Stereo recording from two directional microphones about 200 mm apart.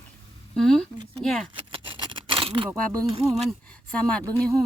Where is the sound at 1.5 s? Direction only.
25° right (ahead or behind).